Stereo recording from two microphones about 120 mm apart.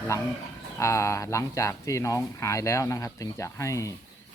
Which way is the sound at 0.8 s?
25° left (ahead or behind).